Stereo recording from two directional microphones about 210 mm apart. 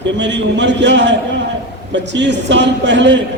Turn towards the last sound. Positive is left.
turn(degrees=-60)  # may be behind; listen again after turning